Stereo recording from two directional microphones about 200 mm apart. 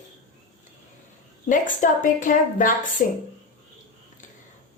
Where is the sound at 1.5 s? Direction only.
40° left (ahead or behind).